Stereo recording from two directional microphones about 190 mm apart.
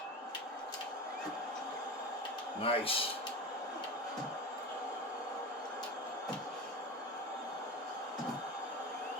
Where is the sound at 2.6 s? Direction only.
30° left (ahead or behind).